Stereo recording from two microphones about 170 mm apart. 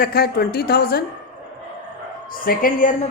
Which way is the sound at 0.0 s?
65° left (ahead or behind).